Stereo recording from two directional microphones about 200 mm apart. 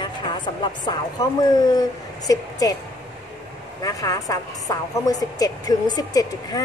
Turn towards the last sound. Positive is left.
turn(degrees=20)  # may be behind; listen again after turning